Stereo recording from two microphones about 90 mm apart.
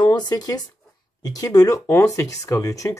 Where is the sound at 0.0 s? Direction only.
50° left (ahead or behind).